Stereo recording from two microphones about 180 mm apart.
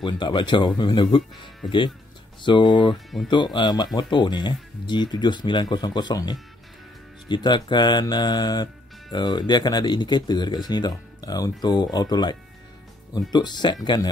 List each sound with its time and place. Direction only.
0.0 s speech: 25° left (ahead or behind)
2.4 s speech: 25° left (ahead or behind)